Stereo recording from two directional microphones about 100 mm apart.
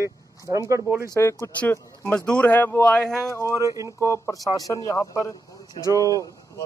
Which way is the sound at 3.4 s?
30° right (ahead or behind).